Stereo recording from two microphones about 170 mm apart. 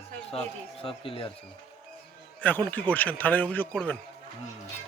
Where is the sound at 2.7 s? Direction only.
10° left (ahead or behind).